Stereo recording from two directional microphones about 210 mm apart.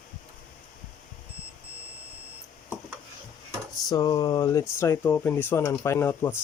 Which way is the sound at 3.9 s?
15° left (ahead or behind).